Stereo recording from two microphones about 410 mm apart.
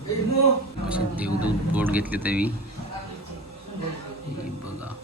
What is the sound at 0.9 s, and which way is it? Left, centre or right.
A man's voice, centre.